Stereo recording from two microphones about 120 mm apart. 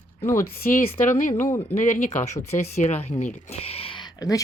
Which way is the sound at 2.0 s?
65° left (ahead or behind).